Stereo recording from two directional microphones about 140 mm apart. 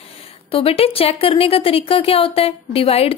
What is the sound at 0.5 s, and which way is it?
Speech, 45° left (ahead or behind).